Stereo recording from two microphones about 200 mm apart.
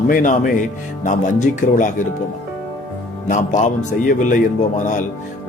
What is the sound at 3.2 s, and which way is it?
A man's voice, 40° left (ahead or behind).